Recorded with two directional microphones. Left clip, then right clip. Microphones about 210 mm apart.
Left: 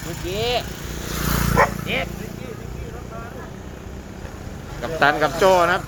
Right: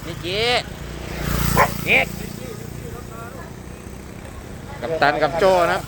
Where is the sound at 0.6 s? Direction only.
60° left (ahead or behind).